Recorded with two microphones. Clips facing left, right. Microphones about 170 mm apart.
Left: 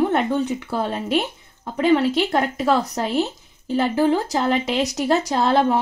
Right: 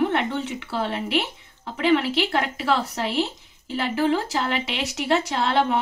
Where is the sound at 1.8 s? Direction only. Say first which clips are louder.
Left 3 dB; 45° left (ahead or behind).